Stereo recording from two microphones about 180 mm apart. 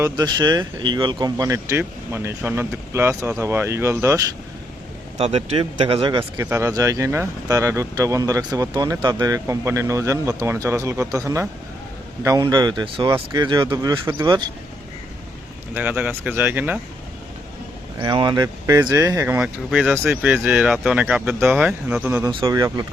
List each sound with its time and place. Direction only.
0.0 s speech: 20° right (ahead or behind)
5.1 s speech: 35° right (ahead or behind)
15.7 s speech: 10° right (ahead or behind)
18.0 s speech: 25° right (ahead or behind); by 22.2 s 5° right (ahead or behind)
22.2 s speech: 25° right (ahead or behind)